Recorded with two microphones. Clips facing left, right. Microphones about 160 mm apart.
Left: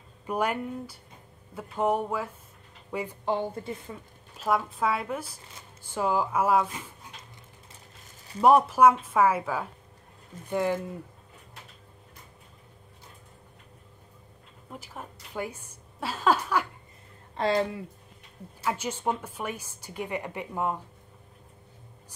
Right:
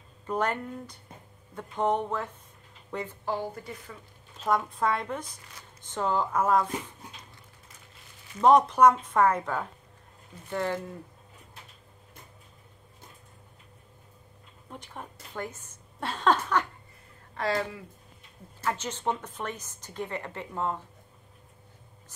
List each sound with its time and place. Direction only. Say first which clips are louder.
0.3 s a woman's voice: left 1 dB; 10° left (ahead or behind)
3.3 s a woman's voice: left 4 dB; 25° left (ahead or behind)
4.4 s a woman's voice: even; 5° left (ahead or behind)
8.4 s a woman's voice: even; 10° left (ahead or behind)
14.7 s a sound: left 1 dB; 5° left (ahead or behind)
17.4 s a woman's voice: left 4 dB; 25° left (ahead or behind)
18.6 s a woman's voice: left 1 dB; 10° left (ahead or behind)